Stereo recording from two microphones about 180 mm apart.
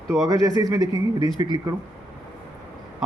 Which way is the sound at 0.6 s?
20° right (ahead or behind).